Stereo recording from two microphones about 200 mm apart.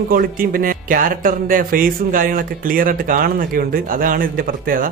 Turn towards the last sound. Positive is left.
turn(degrees=-45)  # may be behind; listen again after turning